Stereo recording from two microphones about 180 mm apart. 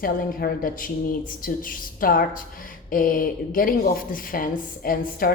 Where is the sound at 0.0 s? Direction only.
55° left (ahead or behind).